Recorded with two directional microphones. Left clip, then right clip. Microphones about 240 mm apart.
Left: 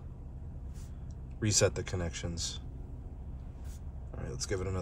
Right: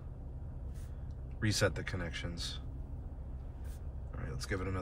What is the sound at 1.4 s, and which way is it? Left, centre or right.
Speech, centre.